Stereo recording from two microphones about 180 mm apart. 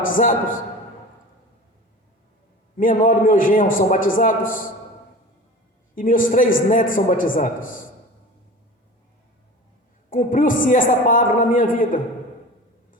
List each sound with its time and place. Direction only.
0.0 s a man's voice: 45° left (ahead or behind)
2.7 s a man's voice: 50° left (ahead or behind)
5.9 s a man's voice: 50° left (ahead or behind)
10.1 s a man's voice: 50° left (ahead or behind)